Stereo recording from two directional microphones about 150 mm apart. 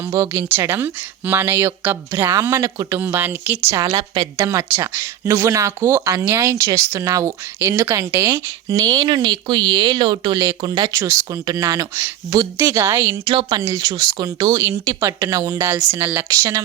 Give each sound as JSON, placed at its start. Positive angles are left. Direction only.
{"t": 0.1, "sound": "speech", "side_deg": -20}
{"t": 3.8, "sound": "speech", "side_deg": -30}
{"t": 4.4, "sound": "speech", "side_deg": -15}
{"t": 8.8, "sound": "speech", "side_deg": -30}
{"t": 13.2, "sound": "speech", "side_deg": -35}
{"t": 13.6, "sound": "speech", "side_deg": -20}